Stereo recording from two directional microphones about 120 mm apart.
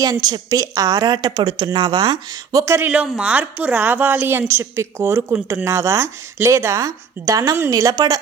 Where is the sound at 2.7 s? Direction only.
10° right (ahead or behind).